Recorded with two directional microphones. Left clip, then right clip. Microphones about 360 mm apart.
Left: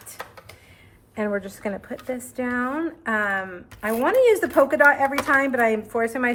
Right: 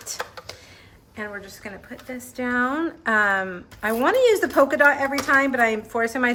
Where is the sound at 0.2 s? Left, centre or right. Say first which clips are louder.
Right 1 dB; right.